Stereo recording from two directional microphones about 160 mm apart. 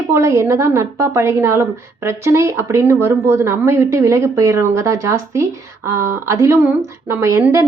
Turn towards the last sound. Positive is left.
turn(degrees=-20)  # may be behind; listen again after turning